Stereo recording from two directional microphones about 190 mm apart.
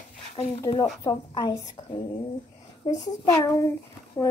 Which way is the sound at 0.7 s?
20° left (ahead or behind).